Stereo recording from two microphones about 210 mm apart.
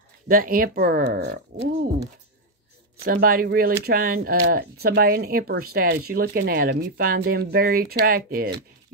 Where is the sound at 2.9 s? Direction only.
45° right (ahead or behind).